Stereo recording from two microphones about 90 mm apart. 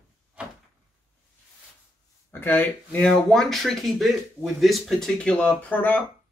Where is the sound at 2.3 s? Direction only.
20° left (ahead or behind).